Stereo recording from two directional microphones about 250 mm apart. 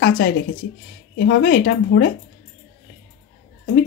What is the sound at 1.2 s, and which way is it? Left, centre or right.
Speech, left.